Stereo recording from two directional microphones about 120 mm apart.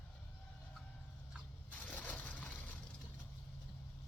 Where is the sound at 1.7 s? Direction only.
10° left (ahead or behind).